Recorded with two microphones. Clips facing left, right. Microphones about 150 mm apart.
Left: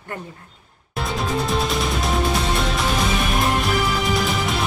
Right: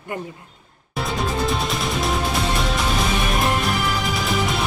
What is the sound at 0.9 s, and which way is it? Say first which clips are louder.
Music: even; centre (ahead or behind).